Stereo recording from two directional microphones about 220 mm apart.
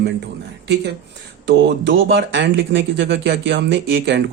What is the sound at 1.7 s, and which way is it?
Speech, 50° right (ahead or behind).